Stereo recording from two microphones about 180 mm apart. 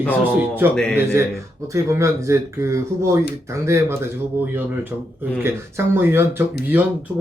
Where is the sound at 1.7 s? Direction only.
15° right (ahead or behind).